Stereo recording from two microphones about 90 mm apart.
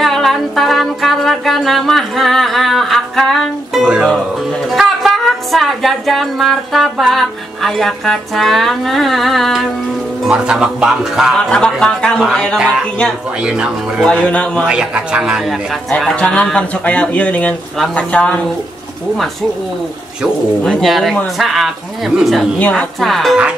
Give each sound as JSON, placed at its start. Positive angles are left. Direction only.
{"t": 0.0, "sound": "music", "side_deg": 0}
{"t": 3.8, "sound": "music", "side_deg": -5}
{"t": 11.3, "sound": "speech", "side_deg": 10}
{"t": 12.5, "sound": "music", "side_deg": -10}
{"t": 14.0, "sound": "speech", "side_deg": 10}
{"t": 14.7, "sound": "music", "side_deg": -10}
{"t": 15.4, "sound": "music", "side_deg": 0}
{"t": 16.2, "sound": "speech", "side_deg": 15}
{"t": 20.6, "sound": "music", "side_deg": 5}
{"t": 22.6, "sound": "speech", "side_deg": 15}
{"t": 22.9, "sound": "music", "side_deg": 0}